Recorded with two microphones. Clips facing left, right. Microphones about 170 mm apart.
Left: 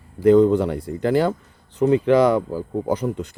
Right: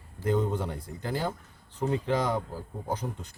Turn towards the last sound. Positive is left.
turn(degrees=80)